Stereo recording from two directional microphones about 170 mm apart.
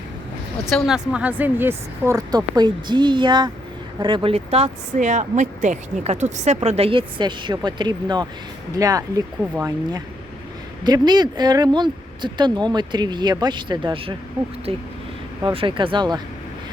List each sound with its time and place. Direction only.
0.7 s speech: 5° right (ahead or behind)
10.8 s speech: 25° right (ahead or behind)